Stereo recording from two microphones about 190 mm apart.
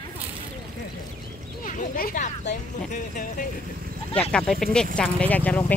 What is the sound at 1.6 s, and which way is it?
Speech, 45° left (ahead or behind).